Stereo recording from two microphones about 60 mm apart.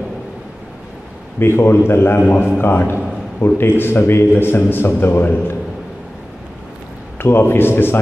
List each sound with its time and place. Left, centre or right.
1.4 s a man's voice: left
7.2 s a man's voice: left